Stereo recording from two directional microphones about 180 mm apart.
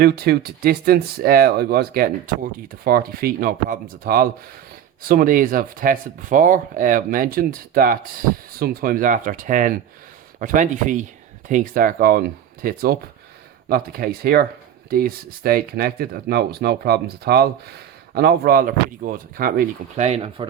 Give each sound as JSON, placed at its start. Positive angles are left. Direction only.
{"t": 0.0, "sound": "speech", "side_deg": -60}
{"t": 20.1, "sound": "speech", "side_deg": -35}